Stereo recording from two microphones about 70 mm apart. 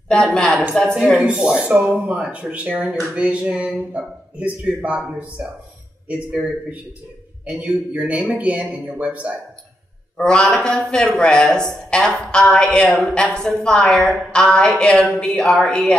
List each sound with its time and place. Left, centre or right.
0.1 s a woman's voice: centre
1.1 s speech: centre
10.1 s a woman's voice: centre